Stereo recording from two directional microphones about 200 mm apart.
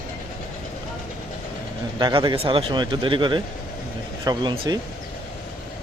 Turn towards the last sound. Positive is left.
turn(degrees=-25)  # may be behind; listen again after turning